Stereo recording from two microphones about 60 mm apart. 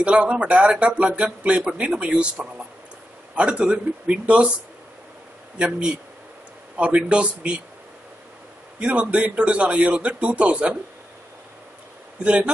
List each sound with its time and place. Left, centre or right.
0.0 s speech: right
5.6 s speech: centre
8.7 s speech: right
12.2 s speech: centre